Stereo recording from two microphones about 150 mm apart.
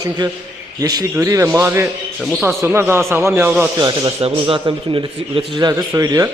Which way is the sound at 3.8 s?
30° right (ahead or behind).